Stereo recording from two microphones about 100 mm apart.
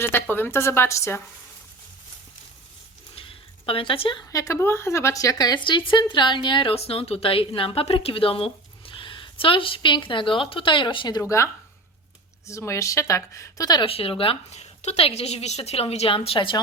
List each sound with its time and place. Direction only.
0.0 s a woman's voice: 20° left (ahead or behind)
3.2 s a sound: 65° left (ahead or behind)
4.3 s speech: 30° left (ahead or behind); by 6.7 s 55° left (ahead or behind)
6.7 s a woman's voice: 85° left; by 11.2 s 50° left (ahead or behind)
11.2 s speech: 30° left (ahead or behind)
12.5 s speech: 30° left (ahead or behind)
13.8 s a woman's voice: 70° left (ahead or behind)